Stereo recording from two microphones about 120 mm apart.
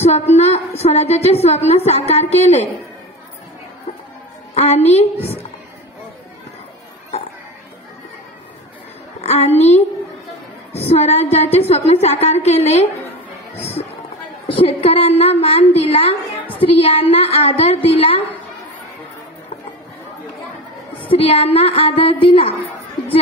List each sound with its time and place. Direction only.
0.0 s a woman's voice: 65° left (ahead or behind)
4.6 s a woman's voice: 60° left (ahead or behind)
9.2 s a sound: 60° left (ahead or behind)
10.7 s a woman's voice: 60° left (ahead or behind)
14.6 s a woman's voice: 55° left (ahead or behind)
20.9 s a woman's voice: 50° left (ahead or behind)